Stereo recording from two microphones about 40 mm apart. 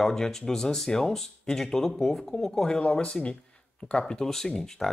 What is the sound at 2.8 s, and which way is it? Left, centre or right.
Speech, left.